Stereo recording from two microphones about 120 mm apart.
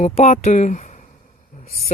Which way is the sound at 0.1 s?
60° left (ahead or behind).